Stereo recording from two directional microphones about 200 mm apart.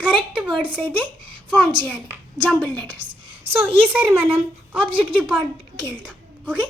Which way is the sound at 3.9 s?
10° right (ahead or behind).